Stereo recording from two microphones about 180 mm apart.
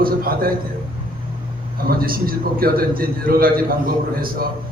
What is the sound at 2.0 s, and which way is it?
A man's voice, 55° right (ahead or behind).